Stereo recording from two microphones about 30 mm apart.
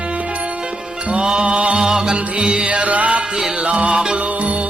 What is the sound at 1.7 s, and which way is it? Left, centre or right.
Music, right.